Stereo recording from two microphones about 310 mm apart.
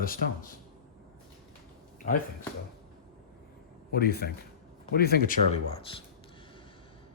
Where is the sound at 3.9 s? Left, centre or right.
Left.